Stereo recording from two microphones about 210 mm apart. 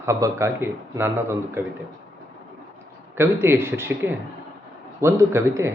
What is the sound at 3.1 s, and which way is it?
Speech, 10° right (ahead or behind).